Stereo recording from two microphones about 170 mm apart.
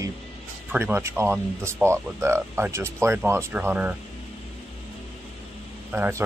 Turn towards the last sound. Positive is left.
turn(degrees=-10)  # may be behind; listen again after turning